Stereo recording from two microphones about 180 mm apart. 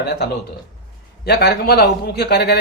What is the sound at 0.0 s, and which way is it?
A man's voice, 65° left (ahead or behind).